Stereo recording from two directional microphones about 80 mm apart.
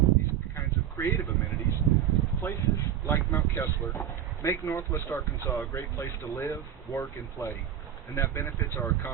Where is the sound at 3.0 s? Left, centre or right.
Left.